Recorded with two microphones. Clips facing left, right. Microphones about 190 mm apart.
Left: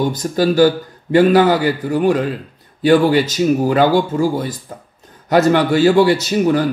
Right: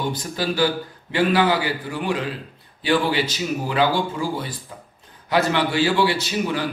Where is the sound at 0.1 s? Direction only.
45° left (ahead or behind).